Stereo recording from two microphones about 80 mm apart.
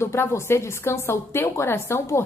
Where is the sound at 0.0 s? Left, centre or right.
Left.